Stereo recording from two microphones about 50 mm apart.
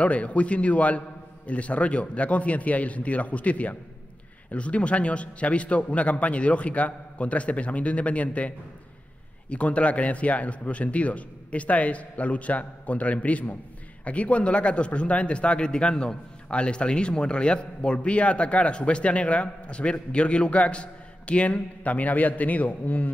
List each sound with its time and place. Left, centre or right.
0.0 s a man's voice: left